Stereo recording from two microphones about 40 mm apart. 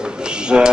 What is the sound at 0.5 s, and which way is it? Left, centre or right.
Speech, right.